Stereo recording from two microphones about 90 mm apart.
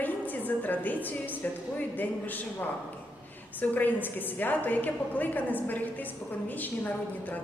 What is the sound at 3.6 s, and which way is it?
A woman's voice, 20° left (ahead or behind).